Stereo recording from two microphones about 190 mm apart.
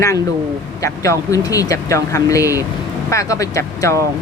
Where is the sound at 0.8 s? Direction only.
15° left (ahead or behind).